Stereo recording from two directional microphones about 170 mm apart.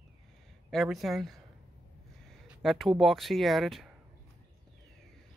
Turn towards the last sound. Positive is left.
turn(degrees=0)  # may be behind; listen again after turning